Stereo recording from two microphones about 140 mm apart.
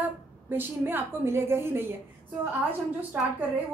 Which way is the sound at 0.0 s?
15° right (ahead or behind).